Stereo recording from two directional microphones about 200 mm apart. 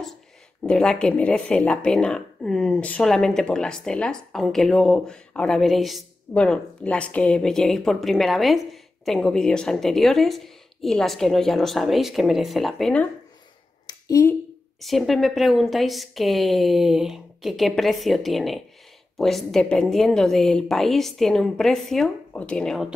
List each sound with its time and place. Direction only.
0.7 s speech: 5° left (ahead or behind)
13.8 s a sound: 15° left (ahead or behind)
14.8 s speech: centre (ahead or behind)